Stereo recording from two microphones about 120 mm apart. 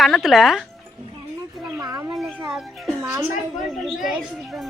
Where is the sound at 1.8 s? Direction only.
30° right (ahead or behind).